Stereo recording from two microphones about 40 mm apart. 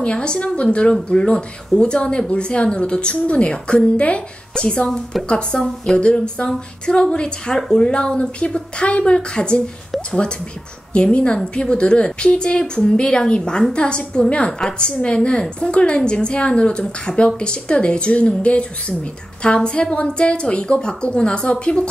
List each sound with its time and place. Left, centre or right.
0.0 s a woman's voice: left
4.8 s a woman's voice: centre
5.9 s a woman's voice: left
7.8 s a woman's voice: left
10.9 s a woman's voice: left